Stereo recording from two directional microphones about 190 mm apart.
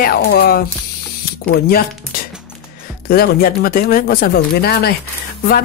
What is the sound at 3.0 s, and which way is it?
Speech, 55° left (ahead or behind).